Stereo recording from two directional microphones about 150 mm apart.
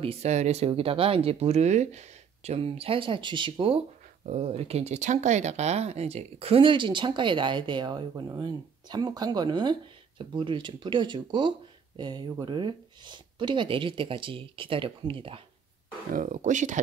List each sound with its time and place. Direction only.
0.0 s speech: 45° right (ahead or behind)
16.1 s speech: 60° right (ahead or behind)